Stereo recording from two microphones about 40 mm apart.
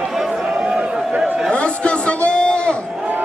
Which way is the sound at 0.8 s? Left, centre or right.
Right.